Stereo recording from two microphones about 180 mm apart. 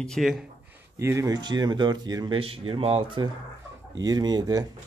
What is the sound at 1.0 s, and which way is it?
Speech, 15° right (ahead or behind).